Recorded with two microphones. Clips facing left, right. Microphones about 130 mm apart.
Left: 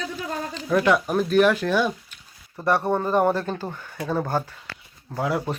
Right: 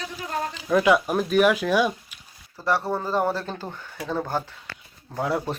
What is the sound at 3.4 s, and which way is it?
Speech, 5° left (ahead or behind).